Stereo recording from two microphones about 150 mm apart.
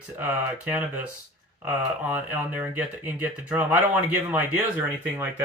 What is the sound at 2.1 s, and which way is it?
Speech, 10° right (ahead or behind).